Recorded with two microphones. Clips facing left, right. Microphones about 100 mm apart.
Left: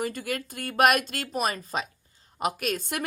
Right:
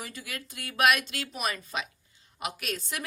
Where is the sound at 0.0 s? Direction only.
50° left (ahead or behind).